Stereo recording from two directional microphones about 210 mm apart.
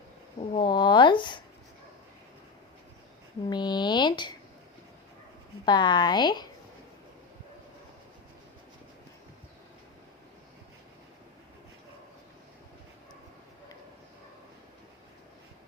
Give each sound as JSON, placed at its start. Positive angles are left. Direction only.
{"t": 0.3, "sound": "speech", "side_deg": 25}
{"t": 3.5, "sound": "a woman's voice", "side_deg": 20}
{"t": 5.6, "sound": "a woman's voice", "side_deg": 20}